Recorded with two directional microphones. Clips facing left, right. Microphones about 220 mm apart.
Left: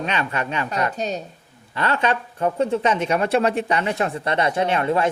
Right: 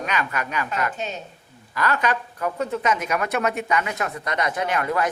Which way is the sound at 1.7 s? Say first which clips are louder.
Left 2 dB; 25° left (ahead or behind).